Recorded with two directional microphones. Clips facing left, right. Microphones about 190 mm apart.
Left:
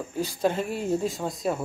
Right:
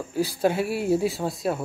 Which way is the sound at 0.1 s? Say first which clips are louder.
Right 3 dB; 10° right (ahead or behind).